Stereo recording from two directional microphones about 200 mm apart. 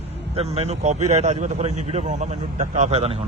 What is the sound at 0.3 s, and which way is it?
A man's voice, 30° right (ahead or behind).